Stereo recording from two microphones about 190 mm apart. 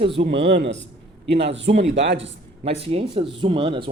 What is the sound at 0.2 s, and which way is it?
Speech, 60° right (ahead or behind).